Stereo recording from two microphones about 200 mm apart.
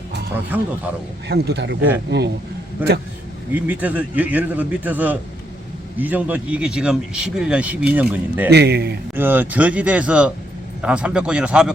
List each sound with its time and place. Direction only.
0.5 s speech: 10° right (ahead or behind)
1.3 s speech: 55° right (ahead or behind)
3.5 s speech: 10° right (ahead or behind)
8.4 s speech: 55° right (ahead or behind)
9.1 s speech: 10° right (ahead or behind)